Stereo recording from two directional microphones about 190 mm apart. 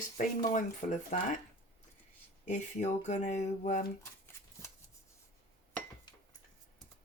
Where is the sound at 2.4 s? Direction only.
40° left (ahead or behind).